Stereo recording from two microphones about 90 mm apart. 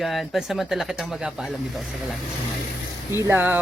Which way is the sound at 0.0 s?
Centre (ahead or behind).